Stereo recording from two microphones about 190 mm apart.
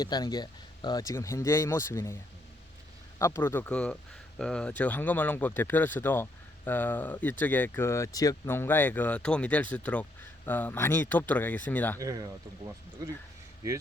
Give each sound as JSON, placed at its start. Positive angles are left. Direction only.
{"t": 0.0, "sound": "speech", "side_deg": 20}
{"t": 3.2, "sound": "speech", "side_deg": 15}
{"t": 11.9, "sound": "speech", "side_deg": -20}